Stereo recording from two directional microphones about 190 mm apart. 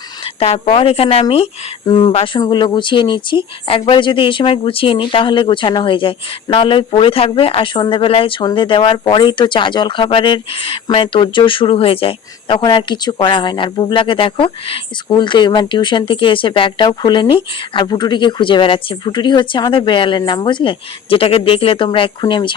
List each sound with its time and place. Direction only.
0.3 s speech: 35° left (ahead or behind)